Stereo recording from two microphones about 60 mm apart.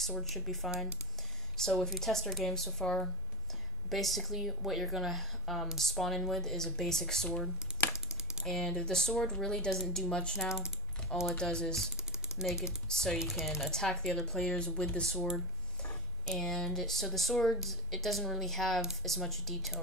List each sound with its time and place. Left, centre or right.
0.2 s speech: centre
8.1 s typing: centre
8.5 s speech: centre
10.4 s speech: centre
11.3 s speech: centre
12.0 s typing: centre
12.8 s speech: centre
13.2 s speech: centre
13.7 s speech: centre